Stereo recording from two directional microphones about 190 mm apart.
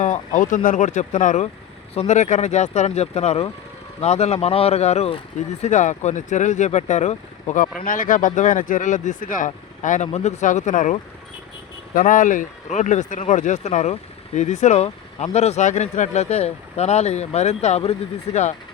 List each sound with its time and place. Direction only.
0.0 s speech: 40° left (ahead or behind)
11.9 s speech: 45° left (ahead or behind)